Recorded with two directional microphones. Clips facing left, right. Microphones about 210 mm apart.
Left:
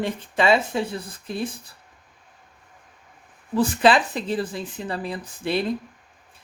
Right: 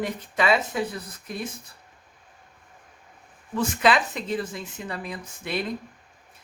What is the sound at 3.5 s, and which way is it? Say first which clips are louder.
Speech: left 4 dB; 30° left (ahead or behind).